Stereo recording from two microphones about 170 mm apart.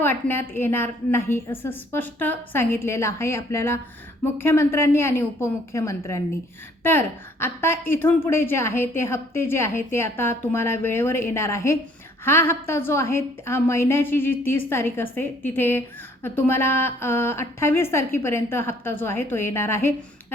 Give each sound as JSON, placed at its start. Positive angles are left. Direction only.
{"t": 0.0, "sound": "a woman's voice", "side_deg": 10}